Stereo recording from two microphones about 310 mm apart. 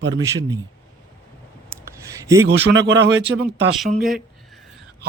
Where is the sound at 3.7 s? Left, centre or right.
Centre.